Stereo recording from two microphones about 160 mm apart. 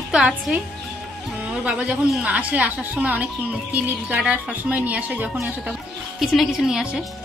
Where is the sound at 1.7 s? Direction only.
5° right (ahead or behind).